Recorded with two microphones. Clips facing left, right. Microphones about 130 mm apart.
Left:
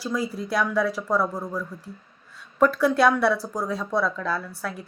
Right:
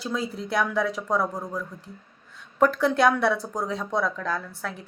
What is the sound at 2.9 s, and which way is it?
Speech, 50° right (ahead or behind).